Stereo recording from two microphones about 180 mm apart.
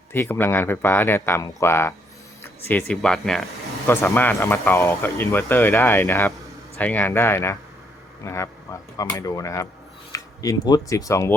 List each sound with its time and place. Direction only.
0.1 s a man's voice: 10° left (ahead or behind)